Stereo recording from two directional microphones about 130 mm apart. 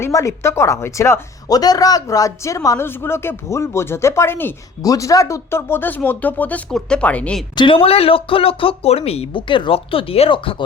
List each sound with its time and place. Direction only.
0.0 s speech: 25° left (ahead or behind)
7.5 s speech: 40° left (ahead or behind)